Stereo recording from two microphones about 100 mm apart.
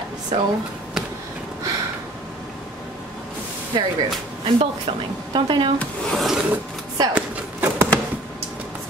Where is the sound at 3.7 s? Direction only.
45° right (ahead or behind).